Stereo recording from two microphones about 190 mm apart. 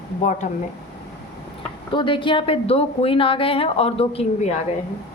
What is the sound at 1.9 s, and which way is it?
Speech, 25° left (ahead or behind).